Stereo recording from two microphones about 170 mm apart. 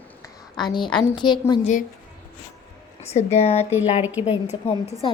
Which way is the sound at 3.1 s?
40° left (ahead or behind).